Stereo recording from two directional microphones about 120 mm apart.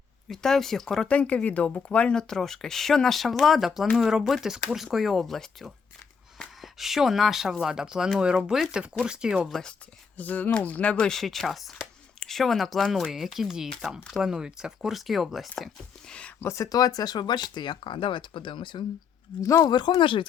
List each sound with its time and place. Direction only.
0.3 s speech: 5° left (ahead or behind)
10.2 s speech: 15° left (ahead or behind)
16.4 s speech: 25° left (ahead or behind); by 18.9 s 40° left (ahead or behind)
19.4 s speech: 25° left (ahead or behind)
20.0 s speech: 45° left (ahead or behind)